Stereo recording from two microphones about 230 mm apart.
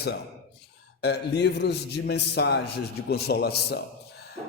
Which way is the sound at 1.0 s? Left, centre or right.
Left.